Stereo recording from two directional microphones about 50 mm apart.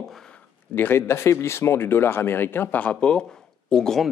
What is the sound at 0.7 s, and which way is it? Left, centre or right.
Speech, left.